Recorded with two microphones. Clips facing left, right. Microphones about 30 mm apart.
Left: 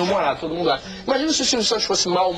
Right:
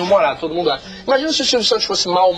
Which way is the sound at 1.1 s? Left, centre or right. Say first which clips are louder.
Right 5 dB; right.